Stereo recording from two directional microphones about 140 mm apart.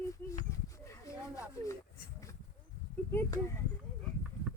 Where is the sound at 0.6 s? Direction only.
20° left (ahead or behind).